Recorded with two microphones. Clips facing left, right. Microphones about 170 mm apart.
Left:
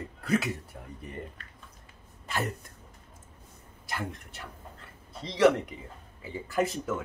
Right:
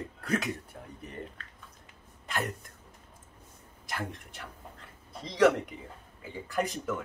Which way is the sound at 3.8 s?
5° left (ahead or behind).